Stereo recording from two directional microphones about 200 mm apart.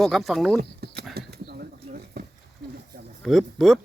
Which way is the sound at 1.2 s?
50° right (ahead or behind).